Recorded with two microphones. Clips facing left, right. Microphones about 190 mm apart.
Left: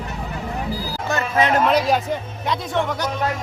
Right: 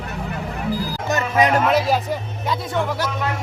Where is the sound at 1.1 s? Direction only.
15° right (ahead or behind).